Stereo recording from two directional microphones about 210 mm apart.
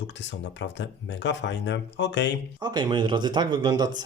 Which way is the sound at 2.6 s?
20° right (ahead or behind).